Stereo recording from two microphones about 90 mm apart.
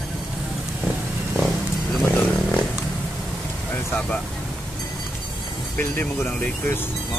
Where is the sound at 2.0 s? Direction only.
15° left (ahead or behind).